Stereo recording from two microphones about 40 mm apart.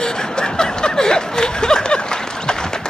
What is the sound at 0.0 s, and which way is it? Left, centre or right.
Chuckle, centre.